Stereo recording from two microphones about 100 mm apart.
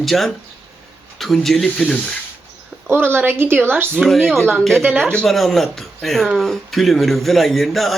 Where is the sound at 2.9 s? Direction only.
25° right (ahead or behind).